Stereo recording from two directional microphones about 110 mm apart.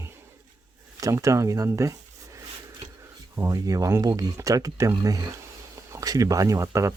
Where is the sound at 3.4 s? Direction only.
30° right (ahead or behind).